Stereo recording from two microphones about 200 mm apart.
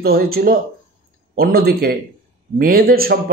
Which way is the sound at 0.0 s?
50° right (ahead or behind).